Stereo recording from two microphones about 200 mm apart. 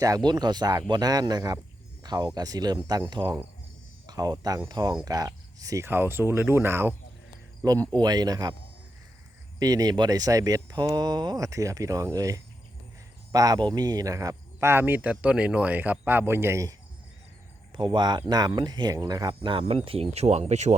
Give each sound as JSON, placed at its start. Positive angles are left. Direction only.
{"t": 0.3, "sound": "speech", "side_deg": -20}
{"t": 9.6, "sound": "speech", "side_deg": -20}